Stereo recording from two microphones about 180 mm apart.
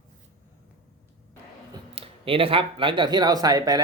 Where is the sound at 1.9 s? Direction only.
30° right (ahead or behind).